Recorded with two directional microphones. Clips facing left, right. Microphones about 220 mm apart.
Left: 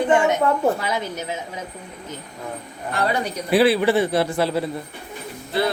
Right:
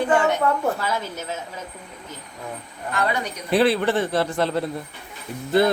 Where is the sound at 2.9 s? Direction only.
35° left (ahead or behind).